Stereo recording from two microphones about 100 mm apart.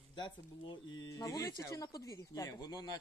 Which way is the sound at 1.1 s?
35° left (ahead or behind).